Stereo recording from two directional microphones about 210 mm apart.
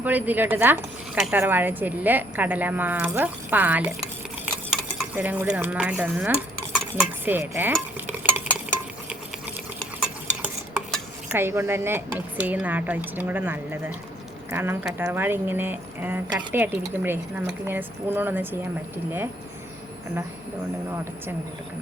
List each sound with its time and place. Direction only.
0.0 s speech: 10° right (ahead or behind)
7.0 s dishes: 10° right (ahead or behind)
10.9 s speech: 10° right (ahead or behind)